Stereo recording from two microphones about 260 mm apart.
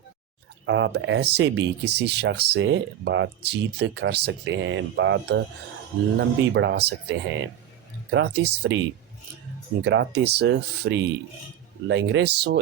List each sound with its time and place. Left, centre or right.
0.6 s speech: right
9.8 s speech: right